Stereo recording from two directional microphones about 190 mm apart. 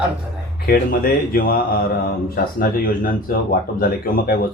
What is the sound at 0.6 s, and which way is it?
Speech, 50° left (ahead or behind).